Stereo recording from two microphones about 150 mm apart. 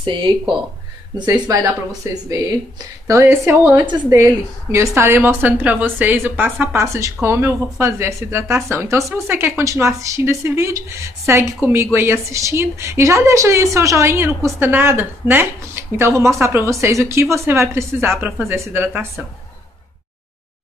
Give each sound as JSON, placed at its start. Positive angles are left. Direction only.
{"t": 0.0, "sound": "speech", "side_deg": -35}
{"t": 1.5, "sound": "a woman's voice", "side_deg": -25}